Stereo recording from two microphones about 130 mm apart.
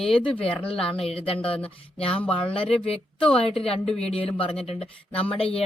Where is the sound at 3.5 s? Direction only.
50° left (ahead or behind).